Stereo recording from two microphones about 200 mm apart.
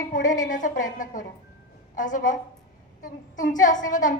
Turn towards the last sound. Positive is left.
turn(degrees=40)  # may be behind; listen again after turning